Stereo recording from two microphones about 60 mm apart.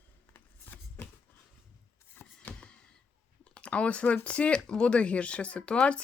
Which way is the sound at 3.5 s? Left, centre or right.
Centre.